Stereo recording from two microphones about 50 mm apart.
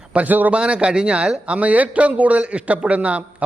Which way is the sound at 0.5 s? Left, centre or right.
Right.